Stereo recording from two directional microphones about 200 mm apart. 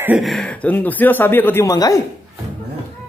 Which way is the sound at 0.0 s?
5° right (ahead or behind).